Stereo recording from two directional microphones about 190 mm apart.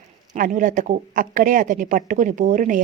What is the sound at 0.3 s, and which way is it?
Speech, 45° right (ahead or behind).